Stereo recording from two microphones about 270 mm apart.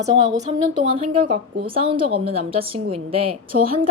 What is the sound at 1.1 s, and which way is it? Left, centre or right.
A woman's voice, centre.